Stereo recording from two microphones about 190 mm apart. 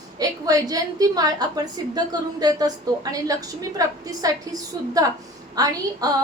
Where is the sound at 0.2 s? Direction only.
20° right (ahead or behind).